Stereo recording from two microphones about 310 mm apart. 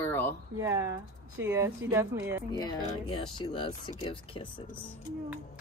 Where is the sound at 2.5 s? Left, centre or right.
Centre.